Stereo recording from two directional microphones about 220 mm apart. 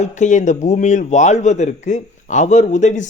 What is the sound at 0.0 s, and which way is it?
Speech, 35° left (ahead or behind).